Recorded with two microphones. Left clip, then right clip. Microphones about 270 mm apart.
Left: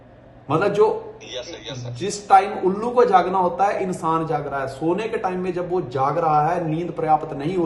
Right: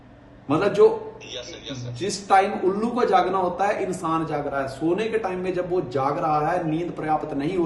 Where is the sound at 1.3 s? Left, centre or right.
Left.